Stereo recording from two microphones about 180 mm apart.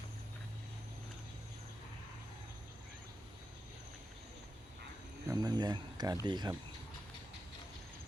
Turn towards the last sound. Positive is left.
turn(degrees=-25)  # may be behind; listen again after turning